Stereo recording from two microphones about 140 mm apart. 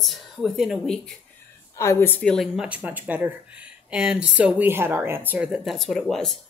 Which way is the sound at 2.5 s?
10° right (ahead or behind).